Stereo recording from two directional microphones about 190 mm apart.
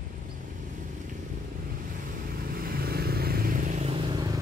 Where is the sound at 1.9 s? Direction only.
50° right (ahead or behind); by 4.4 s 25° right (ahead or behind).